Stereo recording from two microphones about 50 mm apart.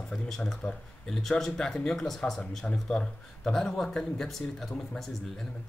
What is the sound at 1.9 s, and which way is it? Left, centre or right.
Speech, centre.